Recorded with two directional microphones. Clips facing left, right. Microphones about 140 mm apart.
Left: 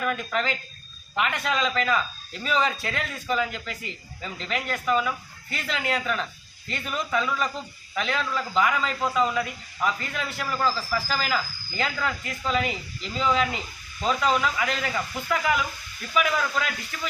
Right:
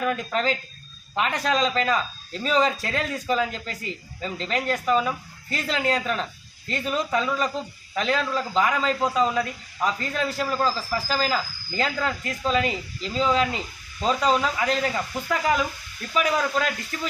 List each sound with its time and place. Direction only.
0.0 s speech: 30° right (ahead or behind)